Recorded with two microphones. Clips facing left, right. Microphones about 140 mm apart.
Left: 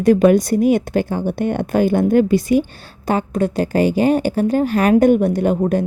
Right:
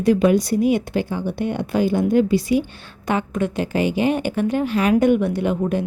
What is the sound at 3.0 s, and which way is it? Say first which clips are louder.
Speech: left 3 dB; 35° left (ahead or behind).